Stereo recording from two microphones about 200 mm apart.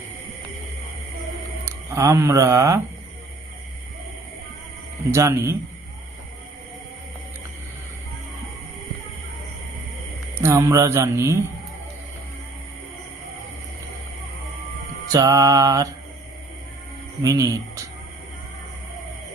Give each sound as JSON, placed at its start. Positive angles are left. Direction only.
{"t": 1.6, "sound": "speech", "side_deg": -15}
{"t": 5.1, "sound": "a man's voice", "side_deg": -15}
{"t": 10.4, "sound": "a man's voice", "side_deg": -15}
{"t": 15.1, "sound": "a man's voice", "side_deg": -15}
{"t": 17.2, "sound": "a man's voice", "side_deg": -15}